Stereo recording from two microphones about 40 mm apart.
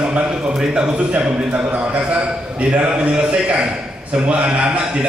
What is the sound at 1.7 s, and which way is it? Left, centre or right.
A man's voice, right.